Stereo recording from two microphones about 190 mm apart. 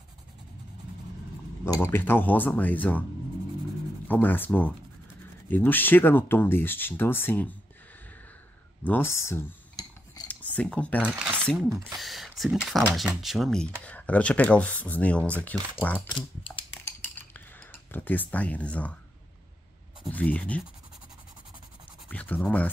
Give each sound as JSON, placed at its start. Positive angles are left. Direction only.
{"t": 1.6, "sound": "speech", "side_deg": 15}
{"t": 4.1, "sound": "speech", "side_deg": 10}
{"t": 8.8, "sound": "cutlery", "side_deg": 10}
{"t": 10.2, "sound": "speech", "side_deg": 10}
{"t": 11.1, "sound": "a sound", "side_deg": -10}
{"t": 11.4, "sound": "speech", "side_deg": 0}
{"t": 16.1, "sound": "typing", "side_deg": 25}
{"t": 17.2, "sound": "a sound", "side_deg": 10}
{"t": 20.1, "sound": "speech", "side_deg": 10}
{"t": 22.1, "sound": "speech", "side_deg": 10}